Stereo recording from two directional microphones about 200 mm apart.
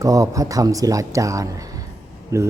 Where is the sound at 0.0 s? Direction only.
15° right (ahead or behind).